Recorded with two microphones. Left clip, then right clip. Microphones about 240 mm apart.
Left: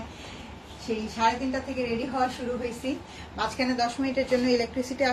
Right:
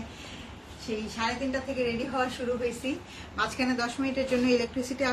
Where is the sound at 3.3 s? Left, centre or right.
Centre.